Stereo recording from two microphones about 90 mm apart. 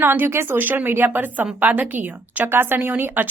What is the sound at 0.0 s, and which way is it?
Speech, 25° right (ahead or behind).